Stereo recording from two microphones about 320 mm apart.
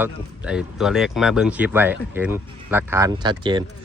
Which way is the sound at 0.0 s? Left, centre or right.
Centre.